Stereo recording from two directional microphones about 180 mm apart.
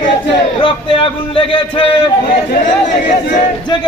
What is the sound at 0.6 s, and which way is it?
A man's voice, 30° left (ahead or behind).